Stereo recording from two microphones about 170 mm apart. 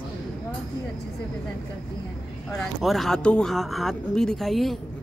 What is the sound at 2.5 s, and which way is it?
Speech, centre (ahead or behind).